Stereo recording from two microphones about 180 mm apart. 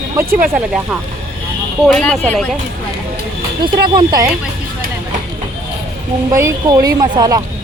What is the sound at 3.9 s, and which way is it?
Speech, 20° right (ahead or behind).